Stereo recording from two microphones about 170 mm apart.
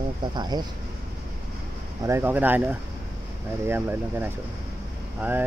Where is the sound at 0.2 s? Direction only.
25° right (ahead or behind).